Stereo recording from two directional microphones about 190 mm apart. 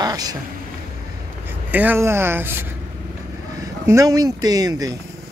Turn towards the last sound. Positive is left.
turn(degrees=-20)  # may be behind; listen again after turning